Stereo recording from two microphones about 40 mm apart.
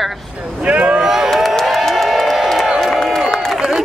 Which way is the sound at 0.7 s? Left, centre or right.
Right.